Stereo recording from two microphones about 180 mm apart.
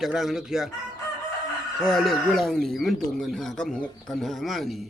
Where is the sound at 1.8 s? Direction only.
Centre (ahead or behind).